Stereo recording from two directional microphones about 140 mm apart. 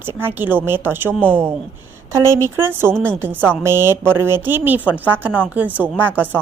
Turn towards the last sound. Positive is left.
turn(degrees=-15)  # may be behind; listen again after turning